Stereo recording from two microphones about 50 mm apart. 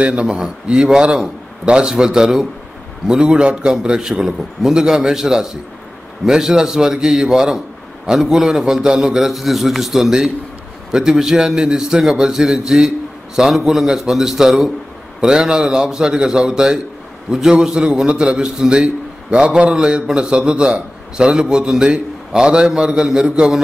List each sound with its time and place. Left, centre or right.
0.0 s a man's voice: right
0.3 s a man's voice: centre
9.3 s a man's voice: centre
15.1 s a man's voice: centre